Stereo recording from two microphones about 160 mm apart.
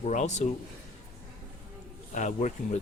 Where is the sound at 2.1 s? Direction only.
50° left (ahead or behind).